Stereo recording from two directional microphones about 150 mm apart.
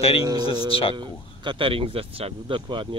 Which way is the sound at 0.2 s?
25° right (ahead or behind).